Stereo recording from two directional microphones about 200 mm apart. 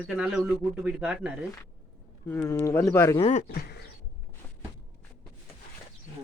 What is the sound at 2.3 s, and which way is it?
Speech, 10° left (ahead or behind).